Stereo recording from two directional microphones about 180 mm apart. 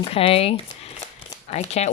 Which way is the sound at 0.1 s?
30° left (ahead or behind).